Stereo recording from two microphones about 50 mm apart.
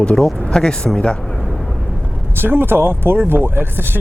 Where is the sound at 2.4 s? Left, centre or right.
Right.